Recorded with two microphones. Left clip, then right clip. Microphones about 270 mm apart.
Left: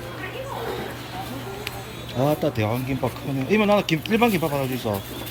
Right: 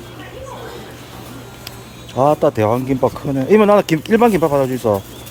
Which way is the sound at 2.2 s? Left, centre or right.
Centre.